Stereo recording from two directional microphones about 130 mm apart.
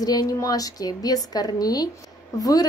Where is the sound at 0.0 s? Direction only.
30° left (ahead or behind).